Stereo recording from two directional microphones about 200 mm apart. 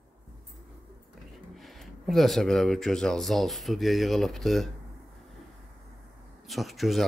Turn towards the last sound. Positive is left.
turn(degrees=0)  # may be behind; listen again after turning